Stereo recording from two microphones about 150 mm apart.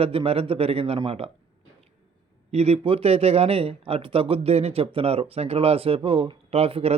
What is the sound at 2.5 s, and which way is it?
Speech, 45° right (ahead or behind).